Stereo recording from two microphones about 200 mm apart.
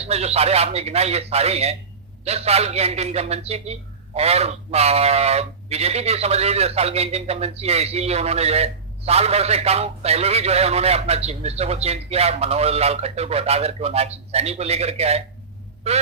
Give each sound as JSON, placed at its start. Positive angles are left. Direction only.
{"t": 0.0, "sound": "a man's voice", "side_deg": -30}